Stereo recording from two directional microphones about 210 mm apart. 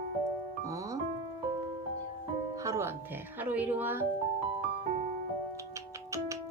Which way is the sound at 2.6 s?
15° right (ahead or behind).